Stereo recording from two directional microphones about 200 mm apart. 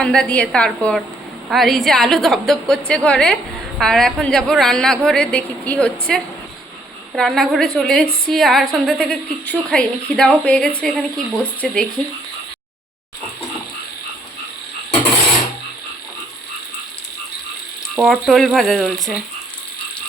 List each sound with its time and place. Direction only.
0.0 s a woman's voice: 5° left (ahead or behind)
17.9 s a woman's voice: 5° right (ahead or behind)